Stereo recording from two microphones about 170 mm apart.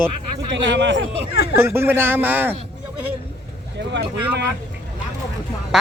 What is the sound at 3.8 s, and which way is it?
Speech, 90° right.